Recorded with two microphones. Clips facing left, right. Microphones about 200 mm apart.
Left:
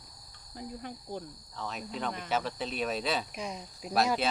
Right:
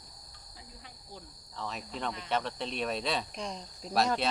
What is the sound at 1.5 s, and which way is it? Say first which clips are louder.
Speech: left 1 dB; centre (ahead or behind).